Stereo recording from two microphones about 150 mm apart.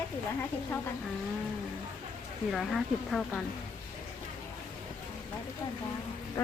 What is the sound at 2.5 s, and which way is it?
Speech, centre (ahead or behind).